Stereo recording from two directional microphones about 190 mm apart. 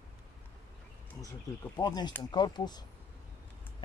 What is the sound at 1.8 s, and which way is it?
Speech, 20° left (ahead or behind).